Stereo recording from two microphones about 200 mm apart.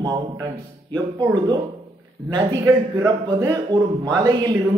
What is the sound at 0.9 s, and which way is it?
Speech, 20° right (ahead or behind).